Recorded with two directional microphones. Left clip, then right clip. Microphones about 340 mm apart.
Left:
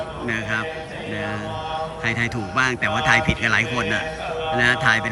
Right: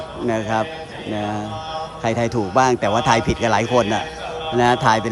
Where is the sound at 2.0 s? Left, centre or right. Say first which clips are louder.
Right 5 dB; centre.